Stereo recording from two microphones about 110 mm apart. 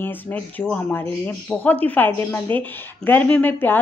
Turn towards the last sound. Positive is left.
turn(degrees=15)  # may be behind; listen again after turning